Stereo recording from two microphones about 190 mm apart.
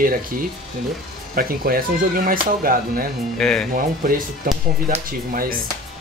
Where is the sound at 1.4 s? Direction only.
50° right (ahead or behind).